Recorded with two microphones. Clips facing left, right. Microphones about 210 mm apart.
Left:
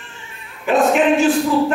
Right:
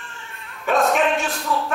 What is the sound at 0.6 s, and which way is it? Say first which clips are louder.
Speech: left 5 dB; centre (ahead or behind).